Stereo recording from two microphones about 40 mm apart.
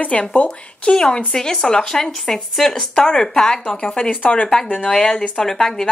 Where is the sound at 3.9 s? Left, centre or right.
Left.